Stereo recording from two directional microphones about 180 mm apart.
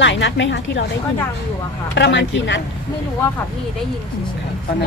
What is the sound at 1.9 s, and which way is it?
Speech, 80° left.